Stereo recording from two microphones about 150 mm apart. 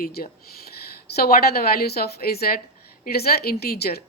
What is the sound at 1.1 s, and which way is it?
A woman's voice, 90° left.